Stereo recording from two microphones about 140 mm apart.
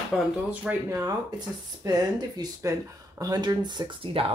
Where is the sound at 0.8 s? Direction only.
20° right (ahead or behind).